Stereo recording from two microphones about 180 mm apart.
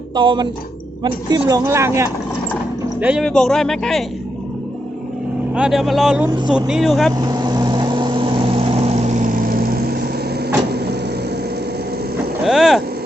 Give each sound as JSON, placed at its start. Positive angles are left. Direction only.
{"t": 0.2, "sound": "speech", "side_deg": -25}
{"t": 3.2, "sound": "speech", "side_deg": 5}
{"t": 5.5, "sound": "speech", "side_deg": 0}
{"t": 7.1, "sound": "vehicle", "side_deg": -20}
{"t": 12.5, "sound": "speech", "side_deg": 0}